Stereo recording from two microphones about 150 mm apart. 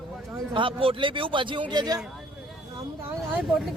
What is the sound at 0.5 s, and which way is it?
Speech, 35° right (ahead or behind).